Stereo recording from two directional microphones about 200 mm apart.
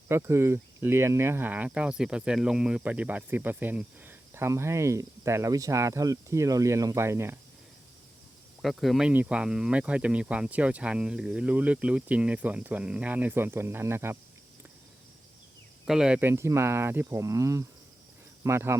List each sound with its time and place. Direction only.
0.1 s speech: 15° right (ahead or behind)
8.6 s speech: centre (ahead or behind)
15.9 s speech: 5° right (ahead or behind)